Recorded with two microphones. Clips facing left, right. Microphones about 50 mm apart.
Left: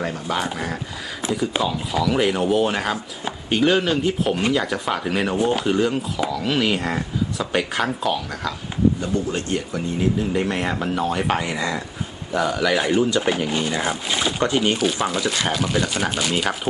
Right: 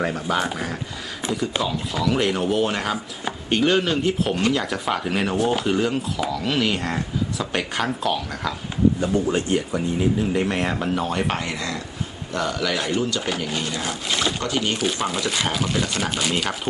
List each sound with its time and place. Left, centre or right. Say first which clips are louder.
0.3 s speech: right 1 dB; centre
9.0 s speech: right 2 dB; centre
10.3 s speech: even; centre
14.8 s speech: left 2 dB; centre